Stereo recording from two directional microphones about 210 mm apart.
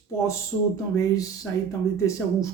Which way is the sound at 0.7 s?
15° left (ahead or behind).